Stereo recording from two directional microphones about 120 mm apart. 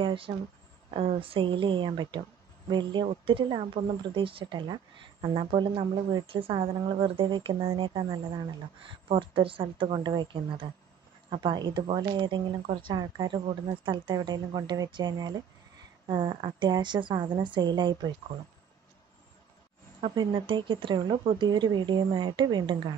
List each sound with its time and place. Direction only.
0.0 s a sound: 45° right (ahead or behind)
0.9 s a woman's voice: 50° right (ahead or behind)
9.1 s a woman's voice: 45° right (ahead or behind)
20.0 s speech: 45° right (ahead or behind)